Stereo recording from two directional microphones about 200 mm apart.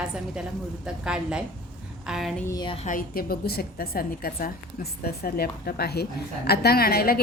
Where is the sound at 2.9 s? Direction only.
45° left (ahead or behind).